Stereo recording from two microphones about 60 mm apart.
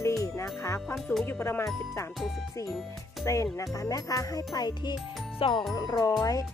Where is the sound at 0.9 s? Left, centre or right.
Centre.